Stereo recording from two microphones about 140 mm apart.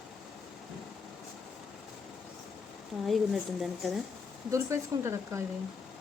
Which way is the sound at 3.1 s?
Centre (ahead or behind).